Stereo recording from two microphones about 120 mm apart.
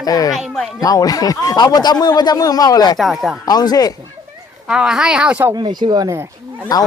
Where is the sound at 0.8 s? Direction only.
30° left (ahead or behind).